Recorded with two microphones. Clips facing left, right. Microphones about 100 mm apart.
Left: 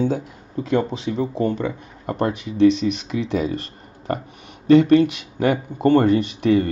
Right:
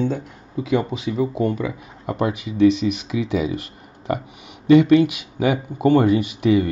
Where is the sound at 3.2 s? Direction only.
5° right (ahead or behind).